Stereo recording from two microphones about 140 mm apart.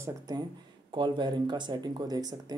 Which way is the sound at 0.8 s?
35° right (ahead or behind).